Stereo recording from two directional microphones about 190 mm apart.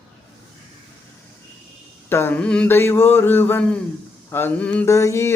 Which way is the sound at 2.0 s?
10° left (ahead or behind).